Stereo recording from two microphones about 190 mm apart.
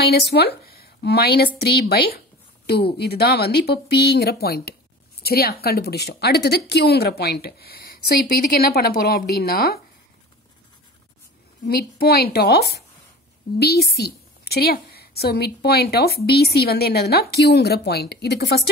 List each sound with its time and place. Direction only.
0.0 s a woman's voice: 60° left (ahead or behind)
11.6 s a woman's voice: 55° left (ahead or behind)